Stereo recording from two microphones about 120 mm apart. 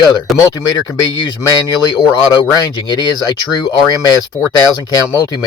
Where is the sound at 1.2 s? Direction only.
35° left (ahead or behind).